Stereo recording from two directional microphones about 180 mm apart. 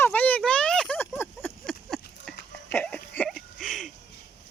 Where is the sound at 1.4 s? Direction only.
Centre (ahead or behind).